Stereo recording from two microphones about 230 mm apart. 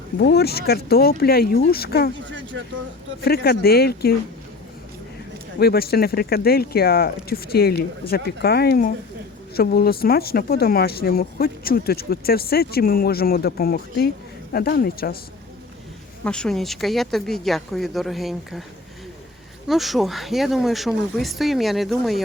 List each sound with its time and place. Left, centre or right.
0.2 s speech: left
2.3 s speech: right
3.2 s speech: left
5.5 s speech: left
16.2 s speech: centre
19.6 s speech: centre